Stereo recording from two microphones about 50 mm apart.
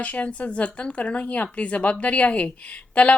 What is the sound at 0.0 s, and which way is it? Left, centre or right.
Speech, left.